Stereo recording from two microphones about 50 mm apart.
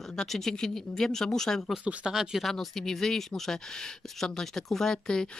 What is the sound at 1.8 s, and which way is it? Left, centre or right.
Speech, right.